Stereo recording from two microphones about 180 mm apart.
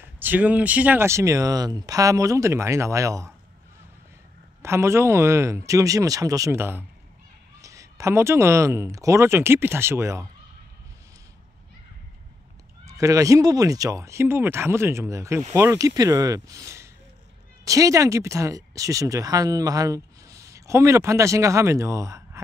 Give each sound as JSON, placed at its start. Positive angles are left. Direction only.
{"t": 0.0, "sound": "speech", "side_deg": -10}
{"t": 4.6, "sound": "speech", "side_deg": -15}
{"t": 12.8, "sound": "speech", "side_deg": -20}